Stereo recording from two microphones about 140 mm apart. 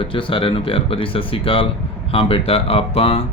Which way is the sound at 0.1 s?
40° left (ahead or behind).